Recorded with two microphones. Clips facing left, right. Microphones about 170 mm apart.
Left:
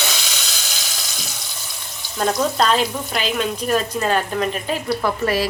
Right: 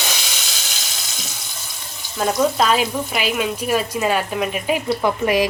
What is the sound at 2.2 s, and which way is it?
Speech, 5° right (ahead or behind).